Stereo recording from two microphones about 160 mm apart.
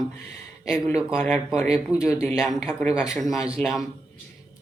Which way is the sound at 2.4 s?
5° right (ahead or behind).